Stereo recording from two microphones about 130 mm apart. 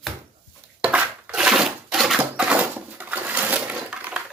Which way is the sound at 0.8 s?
10° right (ahead or behind).